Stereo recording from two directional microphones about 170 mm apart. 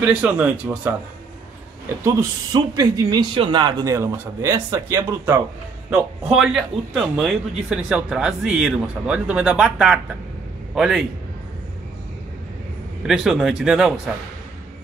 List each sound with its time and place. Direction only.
0.0 s speech: 10° right (ahead or behind)
6.3 s a man's voice: 5° right (ahead or behind)
13.0 s a man's voice: 5° right (ahead or behind)